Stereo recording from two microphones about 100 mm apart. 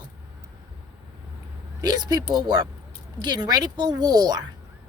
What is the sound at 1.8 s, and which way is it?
A woman's voice, 40° right (ahead or behind).